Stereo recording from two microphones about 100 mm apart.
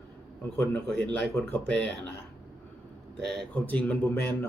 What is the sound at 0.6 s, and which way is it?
Speech, 20° left (ahead or behind).